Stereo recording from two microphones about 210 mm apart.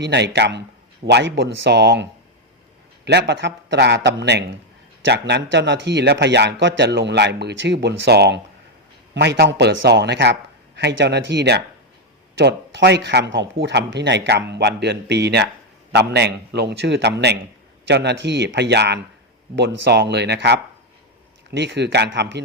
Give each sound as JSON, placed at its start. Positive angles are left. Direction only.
{"t": 0.0, "sound": "speech", "side_deg": -55}